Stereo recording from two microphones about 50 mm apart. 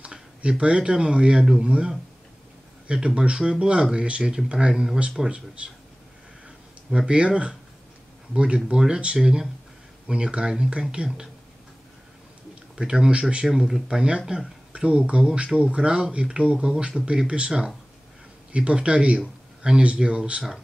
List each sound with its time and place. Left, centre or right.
0.0 s speech: right
3.2 s speech: centre
6.9 s speech: centre
12.7 s speech: centre